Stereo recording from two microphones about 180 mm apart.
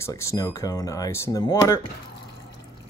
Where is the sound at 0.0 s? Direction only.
15° left (ahead or behind).